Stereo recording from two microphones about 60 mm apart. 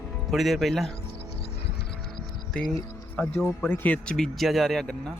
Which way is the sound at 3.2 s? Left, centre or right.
Left.